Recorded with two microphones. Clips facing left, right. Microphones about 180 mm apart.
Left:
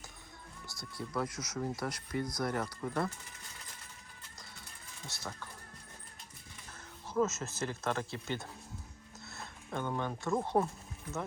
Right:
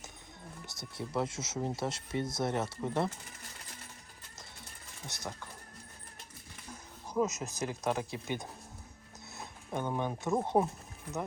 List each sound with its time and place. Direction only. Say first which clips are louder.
0.6 s speech: right 1 dB; 20° right (ahead or behind)
5.0 s speech: right 2 dB; 20° right (ahead or behind)
6.7 s speech: right 2 dB; 15° right (ahead or behind)